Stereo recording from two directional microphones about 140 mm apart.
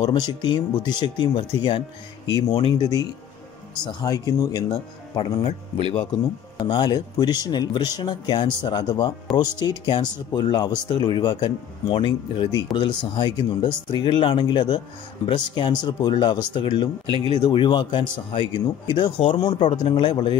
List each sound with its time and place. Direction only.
0.0 s speech: 30° left (ahead or behind)
6.6 s speech: 30° left (ahead or behind)
17.0 s speech: 35° right (ahead or behind)
17.4 s speech: 30° left (ahead or behind)